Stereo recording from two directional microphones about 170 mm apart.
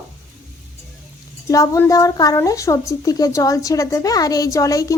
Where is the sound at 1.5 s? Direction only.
15° left (ahead or behind).